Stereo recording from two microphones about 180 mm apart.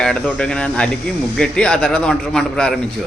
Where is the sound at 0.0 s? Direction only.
5° left (ahead or behind).